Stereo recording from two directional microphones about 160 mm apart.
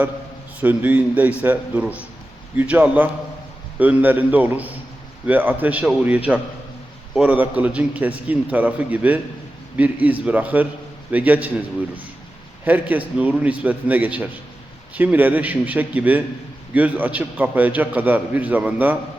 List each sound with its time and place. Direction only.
0.6 s a man's voice: 10° right (ahead or behind)
12.6 s a man's voice: 10° right (ahead or behind)